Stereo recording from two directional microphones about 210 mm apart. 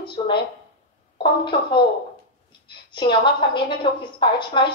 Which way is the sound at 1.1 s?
25° left (ahead or behind).